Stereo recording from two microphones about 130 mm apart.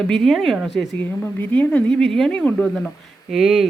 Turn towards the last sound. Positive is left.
turn(degrees=-5)  # may be behind; listen again after turning